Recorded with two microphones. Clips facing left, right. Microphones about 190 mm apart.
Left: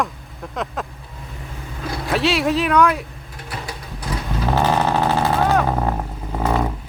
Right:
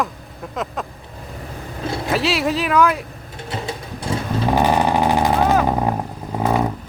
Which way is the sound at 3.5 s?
25° right (ahead or behind).